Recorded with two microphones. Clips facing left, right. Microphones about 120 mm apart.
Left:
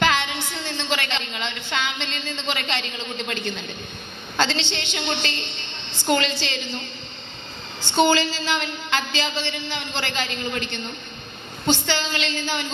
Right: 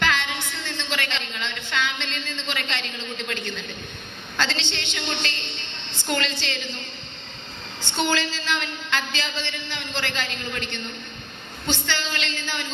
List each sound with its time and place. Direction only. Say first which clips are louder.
0.0 s a sound: left 3 dB; 15° left (ahead or behind)
4.4 s a woman's voice: left 4 dB; 15° left (ahead or behind)
7.9 s a woman's voice: left 6 dB; 15° left (ahead or behind)